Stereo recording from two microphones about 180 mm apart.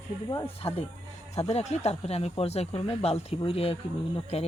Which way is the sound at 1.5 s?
35° left (ahead or behind).